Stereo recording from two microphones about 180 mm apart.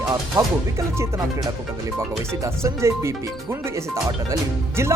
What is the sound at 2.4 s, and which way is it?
Speech, 15° right (ahead or behind).